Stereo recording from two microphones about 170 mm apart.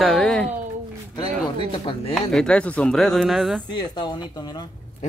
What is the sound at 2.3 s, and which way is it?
Speech, 5° left (ahead or behind).